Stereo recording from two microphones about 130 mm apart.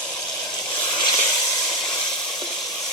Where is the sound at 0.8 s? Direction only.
35° left (ahead or behind).